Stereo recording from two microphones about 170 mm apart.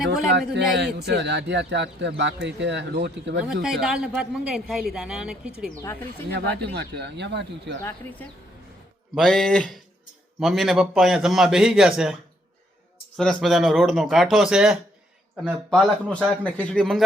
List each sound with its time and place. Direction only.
0.3 s speech: 90° right
3.4 s a man's voice: 5° right (ahead or behind)
5.8 s a man's voice: 15° left (ahead or behind)
6.3 s speech: 80° right
9.1 s a man's voice: centre (ahead or behind)
13.1 s a man's voice: centre (ahead or behind)